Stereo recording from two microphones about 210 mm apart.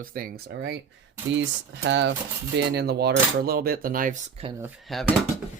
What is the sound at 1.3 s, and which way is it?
Speech, 60° right (ahead or behind).